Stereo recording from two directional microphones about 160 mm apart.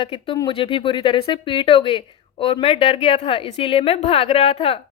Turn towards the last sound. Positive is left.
turn(degrees=35)  # may be behind; listen again after turning